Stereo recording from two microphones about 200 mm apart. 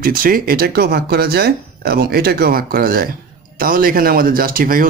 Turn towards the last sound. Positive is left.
turn(degrees=-45)  # may be behind; listen again after turning